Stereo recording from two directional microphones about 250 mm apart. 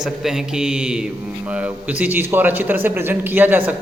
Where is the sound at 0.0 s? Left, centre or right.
Centre.